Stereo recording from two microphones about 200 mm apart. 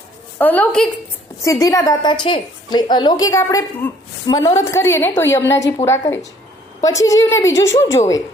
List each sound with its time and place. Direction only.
0.3 s a woman's voice: 10° left (ahead or behind)
1.5 s a woman's voice: 15° left (ahead or behind)